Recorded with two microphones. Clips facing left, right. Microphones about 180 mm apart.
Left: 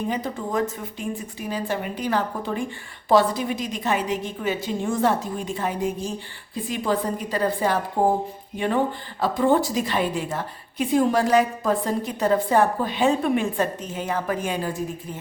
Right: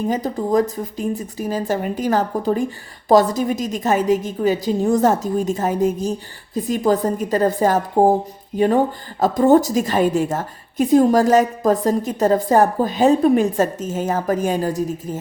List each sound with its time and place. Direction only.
0.1 s a woman's voice: 40° right (ahead or behind)